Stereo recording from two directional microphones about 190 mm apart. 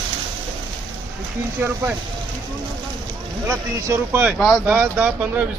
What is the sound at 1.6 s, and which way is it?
Speech, 10° right (ahead or behind).